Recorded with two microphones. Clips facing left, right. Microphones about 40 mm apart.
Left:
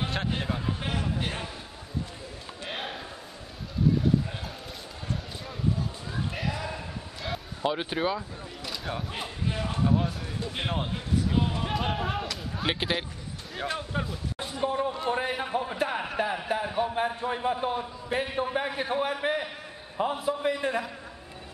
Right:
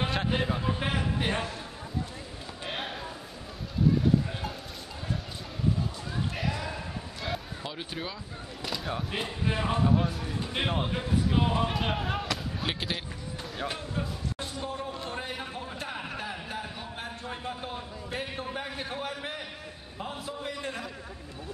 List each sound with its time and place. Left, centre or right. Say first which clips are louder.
0.0 s a sound: right 1 dB; centre
0.6 s a man's voice: right 2 dB; centre
2.6 s a sound: even; centre
7.6 s speech: left 9 dB; left
8.6 s a sound: right 1 dB; centre
9.1 s a man's voice: right 2 dB; centre
9.8 s a man's voice: even; centre
11.7 s basketball bounce: left 1 dB; centre
12.6 s a man's voice: left 5 dB; centre
13.6 s a man's voice: left 3 dB; centre
14.6 s a man's voice: left 10 dB; left